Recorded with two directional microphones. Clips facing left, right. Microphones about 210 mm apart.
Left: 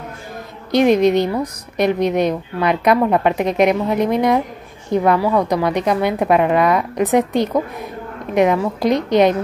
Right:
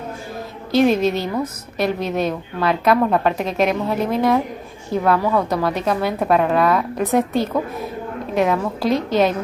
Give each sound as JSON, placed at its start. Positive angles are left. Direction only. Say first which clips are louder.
{"t": 0.7, "sound": "a woman's voice", "louder": "left 3 dB", "side_deg": 15}